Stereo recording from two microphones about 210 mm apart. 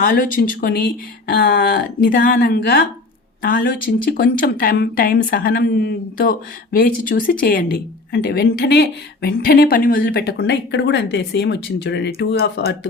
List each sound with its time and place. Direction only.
0.0 s speech: 40° left (ahead or behind)